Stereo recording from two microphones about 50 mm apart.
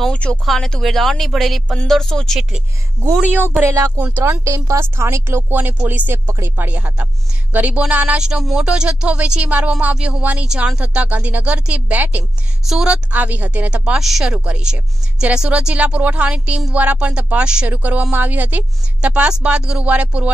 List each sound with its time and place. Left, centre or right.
0.1 s speech: left
0.7 s speech: centre
3.6 s speech: right
4.9 s speech: right
6.2 s speech: right
6.5 s speech: right
8.2 s a woman's voice: centre
12.0 s speech: right
12.6 s a woman's voice: centre
13.1 s speech: right
13.9 s a woman's voice: centre
14.3 s speech: right
17.6 s speech: right
18.9 s speech: right